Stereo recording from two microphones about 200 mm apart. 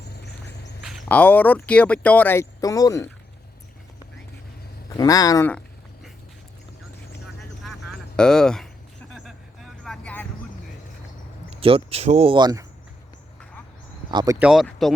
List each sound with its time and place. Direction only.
0.0 s a sound: 55° left (ahead or behind)
0.9 s speech: 5° left (ahead or behind)
4.9 s speech: 15° left (ahead or behind)
7.6 s a sound: centre (ahead or behind)
9.1 s vehicle: centre (ahead or behind)
11.5 s speech: 30° right (ahead or behind)
14.1 s speech: 20° right (ahead or behind)
14.3 s speech: 5° right (ahead or behind)